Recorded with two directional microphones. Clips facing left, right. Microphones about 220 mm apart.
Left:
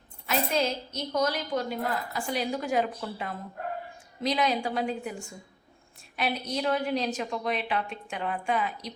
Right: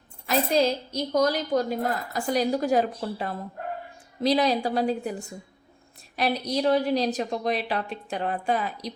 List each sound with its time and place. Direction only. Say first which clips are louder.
0.3 s a woman's voice: right 5 dB; 35° right (ahead or behind)
6.1 s a woman's voice: right 4 dB; 35° right (ahead or behind)